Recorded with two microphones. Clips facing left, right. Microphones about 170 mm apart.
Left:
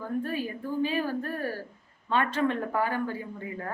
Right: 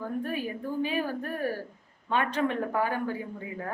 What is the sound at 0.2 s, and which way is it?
A woman's voice, 15° right (ahead or behind).